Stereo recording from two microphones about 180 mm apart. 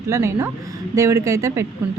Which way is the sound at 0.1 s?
15° right (ahead or behind).